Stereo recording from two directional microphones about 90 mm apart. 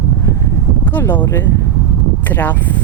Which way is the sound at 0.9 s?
20° left (ahead or behind).